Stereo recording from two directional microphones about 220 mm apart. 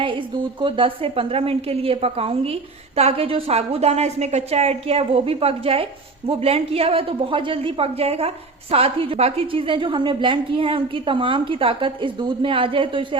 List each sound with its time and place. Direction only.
0.6 s a woman's voice: 25° right (ahead or behind)